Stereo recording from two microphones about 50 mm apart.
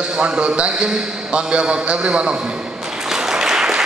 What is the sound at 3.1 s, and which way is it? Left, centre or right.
Applause, centre.